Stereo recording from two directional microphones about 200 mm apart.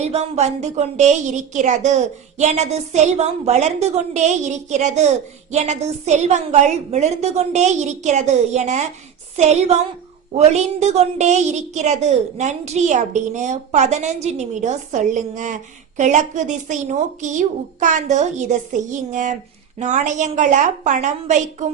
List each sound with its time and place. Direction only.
0.0 s a woman's voice: 35° right (ahead or behind)